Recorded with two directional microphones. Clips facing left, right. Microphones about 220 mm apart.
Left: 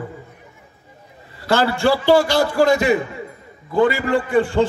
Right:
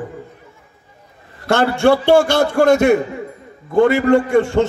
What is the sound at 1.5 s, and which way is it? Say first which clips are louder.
A man's voice: right 3 dB; 50° right (ahead or behind).